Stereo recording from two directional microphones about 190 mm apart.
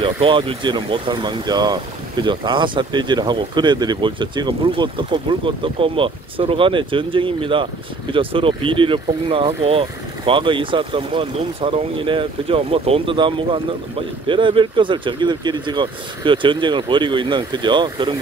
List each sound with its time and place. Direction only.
0.0 s speech: 25° right (ahead or behind)